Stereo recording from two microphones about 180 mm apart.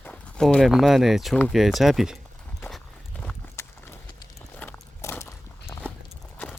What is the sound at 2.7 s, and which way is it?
Clip-clop, 5° left (ahead or behind).